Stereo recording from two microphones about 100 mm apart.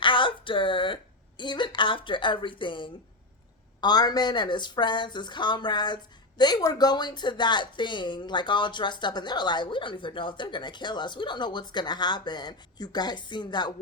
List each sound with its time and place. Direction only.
0.0 s a sound: 55° left (ahead or behind)
1.4 s speech: 50° left (ahead or behind)
3.8 s speech: 45° left (ahead or behind)